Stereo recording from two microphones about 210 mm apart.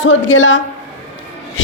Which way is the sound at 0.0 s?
65° left (ahead or behind).